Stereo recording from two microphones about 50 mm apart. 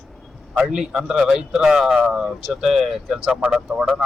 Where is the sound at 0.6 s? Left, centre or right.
Centre.